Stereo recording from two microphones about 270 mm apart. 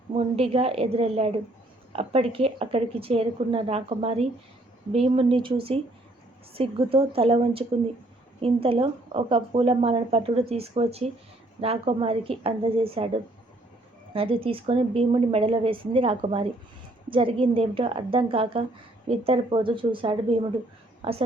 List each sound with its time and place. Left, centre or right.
0.1 s speech: right
14.1 s speech: right